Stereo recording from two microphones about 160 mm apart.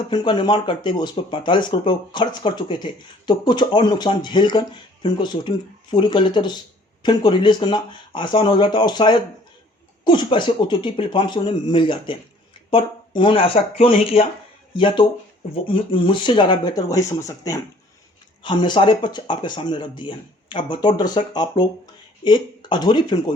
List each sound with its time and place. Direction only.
0.1 s speech: 30° left (ahead or behind)